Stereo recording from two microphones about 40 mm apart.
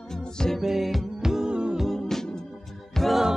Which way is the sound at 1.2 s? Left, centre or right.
Centre.